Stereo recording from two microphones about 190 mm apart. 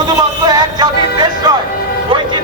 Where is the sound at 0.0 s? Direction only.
20° right (ahead or behind).